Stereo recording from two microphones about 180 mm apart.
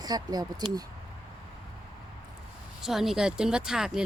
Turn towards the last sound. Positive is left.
turn(degrees=-5)  # may be behind; listen again after turning